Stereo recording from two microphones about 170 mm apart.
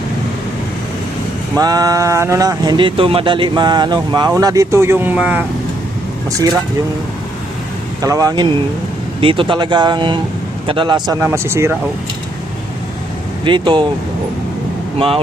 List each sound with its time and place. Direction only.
1.5 s speech: 20° right (ahead or behind)
8.0 s speech: 20° right (ahead or behind)
11.2 s speech: 15° right (ahead or behind)
13.4 s speech: 30° right (ahead or behind)
14.9 s speech: 35° right (ahead or behind)